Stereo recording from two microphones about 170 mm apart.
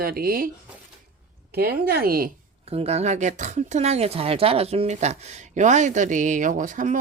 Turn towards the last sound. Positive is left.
turn(degrees=-50)  # may be behind; listen again after turning